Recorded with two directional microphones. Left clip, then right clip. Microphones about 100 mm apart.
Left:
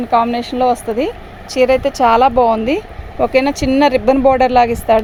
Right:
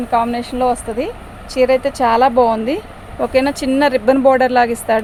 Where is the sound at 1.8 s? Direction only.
90° left.